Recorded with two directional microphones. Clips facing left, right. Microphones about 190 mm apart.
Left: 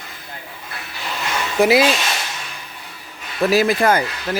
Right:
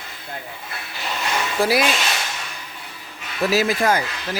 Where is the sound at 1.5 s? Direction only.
20° left (ahead or behind).